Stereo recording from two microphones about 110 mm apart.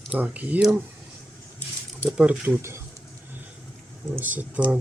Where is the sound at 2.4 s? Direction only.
20° right (ahead or behind).